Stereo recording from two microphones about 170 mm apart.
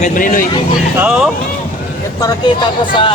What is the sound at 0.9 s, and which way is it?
Speech, 10° right (ahead or behind).